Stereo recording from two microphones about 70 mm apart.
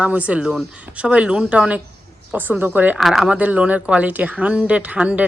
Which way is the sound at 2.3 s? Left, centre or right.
Right.